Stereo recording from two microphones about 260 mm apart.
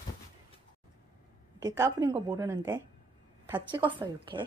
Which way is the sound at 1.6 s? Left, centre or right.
Centre.